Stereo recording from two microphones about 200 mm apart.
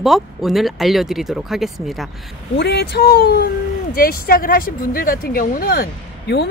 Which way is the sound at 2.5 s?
55° left (ahead or behind).